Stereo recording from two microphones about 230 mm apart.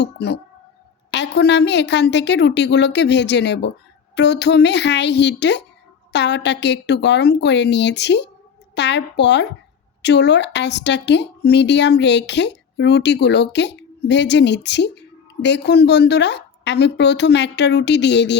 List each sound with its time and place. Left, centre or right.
0.0 s a woman's voice: left